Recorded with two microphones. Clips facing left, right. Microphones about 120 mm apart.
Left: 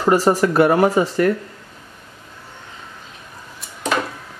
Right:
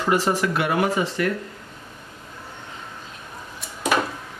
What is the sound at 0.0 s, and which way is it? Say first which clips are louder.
Speech: left 6 dB; 40° left (ahead or behind).